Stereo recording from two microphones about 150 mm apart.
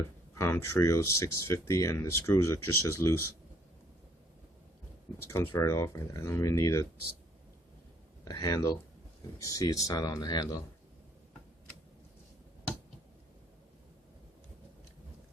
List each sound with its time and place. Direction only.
0.3 s speech: 15° left (ahead or behind)
5.3 s speech: 15° left (ahead or behind)
8.2 s speech: 25° left (ahead or behind)